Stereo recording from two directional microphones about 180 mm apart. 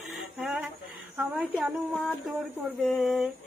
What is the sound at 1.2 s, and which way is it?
Speech, 5° right (ahead or behind).